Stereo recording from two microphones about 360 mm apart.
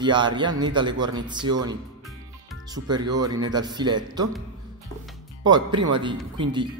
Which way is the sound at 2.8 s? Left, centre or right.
Centre.